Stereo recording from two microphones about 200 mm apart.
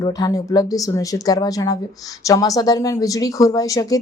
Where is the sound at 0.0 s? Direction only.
20° left (ahead or behind).